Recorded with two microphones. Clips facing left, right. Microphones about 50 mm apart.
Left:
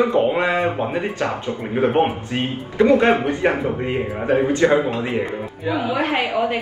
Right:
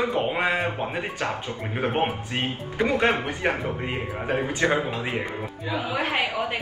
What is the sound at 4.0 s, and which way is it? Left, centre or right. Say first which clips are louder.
Music: left 9 dB; centre.